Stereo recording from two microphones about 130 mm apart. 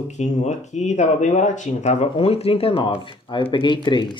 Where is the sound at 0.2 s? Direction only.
60° left (ahead or behind).